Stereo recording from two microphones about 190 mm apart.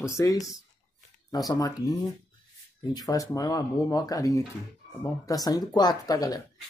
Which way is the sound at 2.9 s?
20° left (ahead or behind).